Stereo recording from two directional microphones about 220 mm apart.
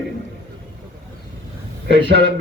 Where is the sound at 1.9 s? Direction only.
50° right (ahead or behind).